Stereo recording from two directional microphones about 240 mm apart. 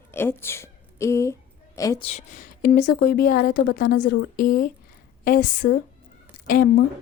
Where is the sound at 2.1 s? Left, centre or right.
Left.